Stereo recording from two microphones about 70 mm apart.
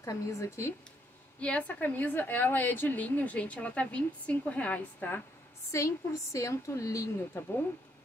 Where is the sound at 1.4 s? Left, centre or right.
Centre.